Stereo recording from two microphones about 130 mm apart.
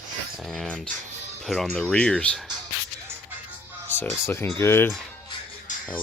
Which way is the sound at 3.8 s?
15° left (ahead or behind).